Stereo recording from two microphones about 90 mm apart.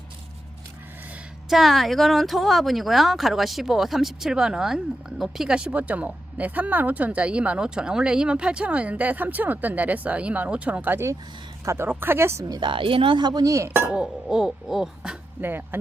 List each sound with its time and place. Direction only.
1.5 s speech: centre (ahead or behind)
10.9 s speech: 30° right (ahead or behind)
12.5 s speech: 60° right (ahead or behind); by 13.7 s 40° right (ahead or behind)
13.9 s speech: 10° right (ahead or behind)
15.4 s speech: 20° right (ahead or behind)